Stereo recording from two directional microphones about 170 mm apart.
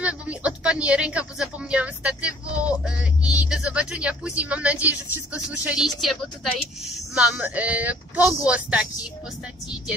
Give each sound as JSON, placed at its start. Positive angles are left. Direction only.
{"t": 0.0, "sound": "a woman's voice", "side_deg": -5}
{"t": 8.2, "sound": "speech", "side_deg": 20}
{"t": 8.5, "sound": "speech", "side_deg": -5}